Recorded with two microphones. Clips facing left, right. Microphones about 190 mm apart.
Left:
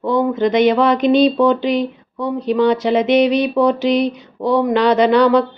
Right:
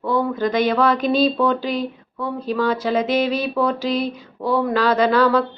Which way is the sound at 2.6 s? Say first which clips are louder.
Left 5 dB; 25° left (ahead or behind).